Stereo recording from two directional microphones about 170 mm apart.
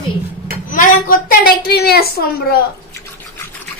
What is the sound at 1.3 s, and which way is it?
A woman's voice, 70° left (ahead or behind).